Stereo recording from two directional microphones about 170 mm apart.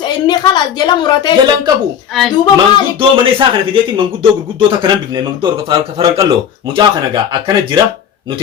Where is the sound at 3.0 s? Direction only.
30° right (ahead or behind).